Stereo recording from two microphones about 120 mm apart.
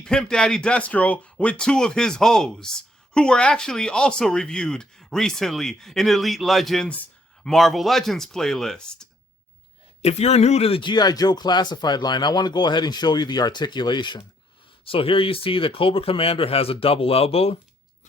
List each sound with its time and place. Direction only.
0.0 s speech: 5° left (ahead or behind)
7.5 s speech: centre (ahead or behind)
10.0 s speech: 60° left (ahead or behind); by 14.2 s 40° left (ahead or behind)
14.8 s speech: 50° left (ahead or behind)